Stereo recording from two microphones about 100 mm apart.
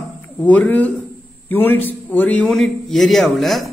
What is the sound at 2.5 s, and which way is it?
A man's voice, 5° left (ahead or behind).